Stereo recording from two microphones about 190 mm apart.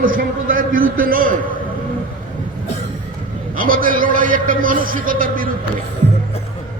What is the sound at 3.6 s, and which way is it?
A man's voice, 45° right (ahead or behind).